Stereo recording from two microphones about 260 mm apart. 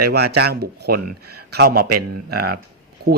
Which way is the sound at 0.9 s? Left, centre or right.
Right.